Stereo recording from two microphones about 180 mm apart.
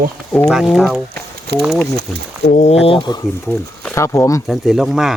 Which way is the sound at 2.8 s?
25° left (ahead or behind).